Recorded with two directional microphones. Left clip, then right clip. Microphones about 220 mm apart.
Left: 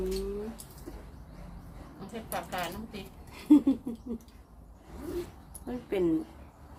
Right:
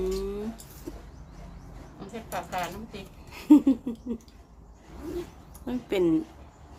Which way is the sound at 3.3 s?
35° right (ahead or behind).